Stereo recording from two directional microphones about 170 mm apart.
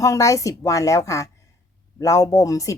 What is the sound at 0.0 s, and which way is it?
A woman's voice, 20° left (ahead or behind).